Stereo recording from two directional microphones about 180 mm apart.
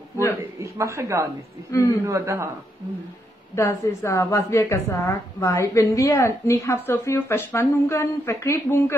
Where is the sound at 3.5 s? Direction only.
15° left (ahead or behind).